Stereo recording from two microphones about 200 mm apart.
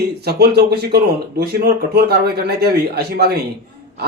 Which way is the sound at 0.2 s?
55° right (ahead or behind).